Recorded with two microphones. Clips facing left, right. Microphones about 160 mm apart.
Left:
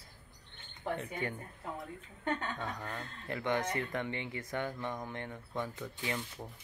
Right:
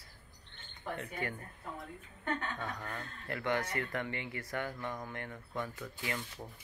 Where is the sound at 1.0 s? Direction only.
20° left (ahead or behind).